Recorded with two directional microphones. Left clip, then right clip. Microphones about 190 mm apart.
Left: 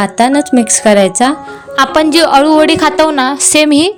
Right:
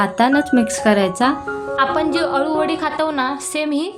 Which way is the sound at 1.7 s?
55° left (ahead or behind).